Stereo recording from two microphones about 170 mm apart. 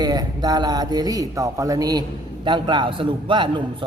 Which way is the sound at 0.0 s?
25° right (ahead or behind).